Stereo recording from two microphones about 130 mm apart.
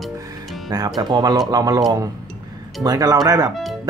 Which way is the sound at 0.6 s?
30° right (ahead or behind).